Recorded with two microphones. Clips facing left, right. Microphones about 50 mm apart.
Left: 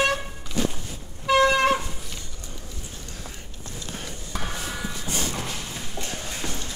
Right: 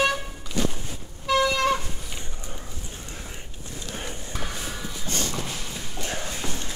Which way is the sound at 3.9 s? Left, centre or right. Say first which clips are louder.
Right 1 dB; centre.